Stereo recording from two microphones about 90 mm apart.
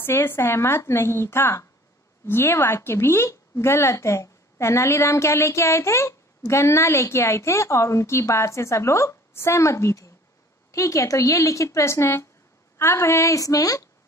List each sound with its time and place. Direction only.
0.0 s a woman's voice: 25° left (ahead or behind)